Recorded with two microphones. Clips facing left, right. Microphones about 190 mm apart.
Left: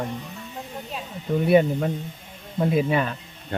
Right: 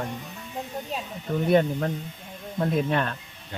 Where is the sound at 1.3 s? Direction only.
10° left (ahead or behind).